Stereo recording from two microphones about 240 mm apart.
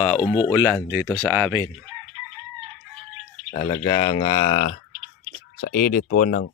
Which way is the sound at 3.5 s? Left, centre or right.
Centre.